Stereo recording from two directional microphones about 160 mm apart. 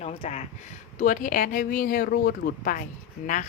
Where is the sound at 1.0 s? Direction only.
60° left (ahead or behind).